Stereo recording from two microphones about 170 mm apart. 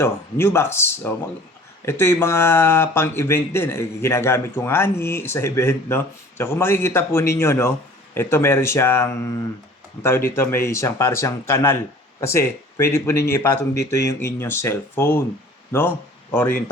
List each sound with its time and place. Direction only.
0.0 s speech: 15° left (ahead or behind)